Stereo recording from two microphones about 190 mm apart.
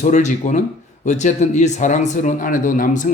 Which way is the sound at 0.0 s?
40° left (ahead or behind).